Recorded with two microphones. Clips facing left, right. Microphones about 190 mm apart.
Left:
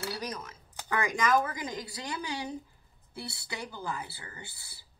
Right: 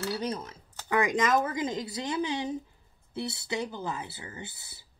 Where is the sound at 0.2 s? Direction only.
30° right (ahead or behind).